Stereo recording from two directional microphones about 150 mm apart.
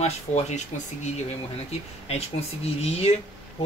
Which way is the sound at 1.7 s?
45° left (ahead or behind).